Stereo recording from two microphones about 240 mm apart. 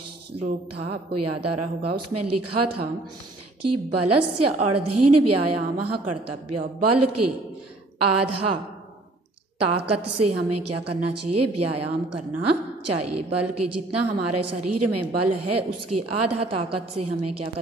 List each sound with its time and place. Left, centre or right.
0.7 s a woman's voice: right
9.6 s a woman's voice: right